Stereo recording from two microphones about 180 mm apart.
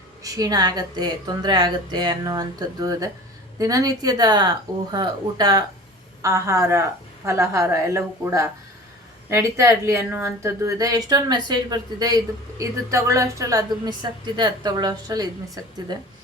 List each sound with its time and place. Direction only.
0.2 s a woman's voice: 20° right (ahead or behind)